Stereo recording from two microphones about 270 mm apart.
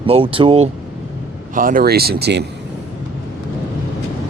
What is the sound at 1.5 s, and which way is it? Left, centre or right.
Speech, right.